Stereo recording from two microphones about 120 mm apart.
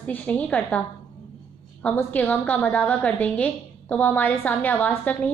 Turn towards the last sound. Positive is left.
turn(degrees=15)  # may be behind; listen again after turning